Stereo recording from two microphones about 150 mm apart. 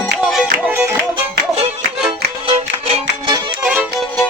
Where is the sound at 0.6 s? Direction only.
15° right (ahead or behind).